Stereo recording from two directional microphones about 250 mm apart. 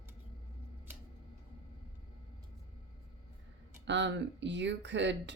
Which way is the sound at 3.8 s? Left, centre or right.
Right.